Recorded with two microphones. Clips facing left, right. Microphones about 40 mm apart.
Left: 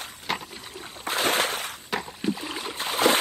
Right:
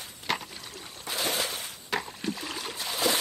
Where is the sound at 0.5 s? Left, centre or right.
Left.